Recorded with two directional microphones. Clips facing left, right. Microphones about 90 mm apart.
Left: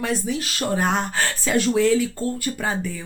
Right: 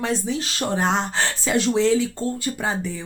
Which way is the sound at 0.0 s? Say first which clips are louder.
Even; 30° right (ahead or behind).